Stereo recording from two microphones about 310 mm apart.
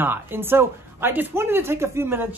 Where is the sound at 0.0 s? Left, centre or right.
Centre.